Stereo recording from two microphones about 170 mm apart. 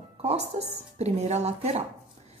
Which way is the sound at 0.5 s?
40° right (ahead or behind).